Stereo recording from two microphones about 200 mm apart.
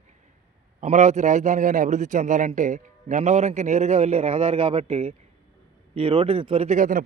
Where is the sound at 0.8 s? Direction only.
35° right (ahead or behind).